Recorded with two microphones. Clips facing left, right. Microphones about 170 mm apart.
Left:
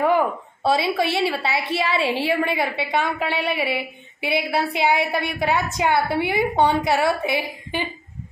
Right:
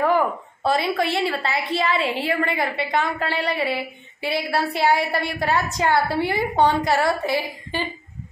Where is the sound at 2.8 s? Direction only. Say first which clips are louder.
Even; 20° left (ahead or behind).